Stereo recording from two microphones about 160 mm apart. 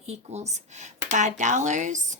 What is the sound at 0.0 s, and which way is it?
Speech, 45° right (ahead or behind).